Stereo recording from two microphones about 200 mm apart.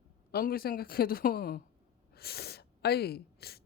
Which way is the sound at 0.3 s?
50° left (ahead or behind).